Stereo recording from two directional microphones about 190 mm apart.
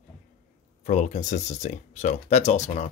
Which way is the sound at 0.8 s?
40° left (ahead or behind).